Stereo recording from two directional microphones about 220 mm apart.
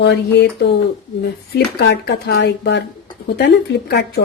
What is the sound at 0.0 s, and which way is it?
A woman's voice, 50° left (ahead or behind).